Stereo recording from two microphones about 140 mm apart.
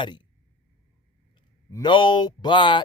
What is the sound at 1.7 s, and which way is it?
Speech, 35° left (ahead or behind).